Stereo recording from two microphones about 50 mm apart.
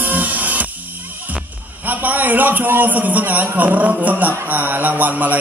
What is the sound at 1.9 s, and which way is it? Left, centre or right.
A man's voice, right.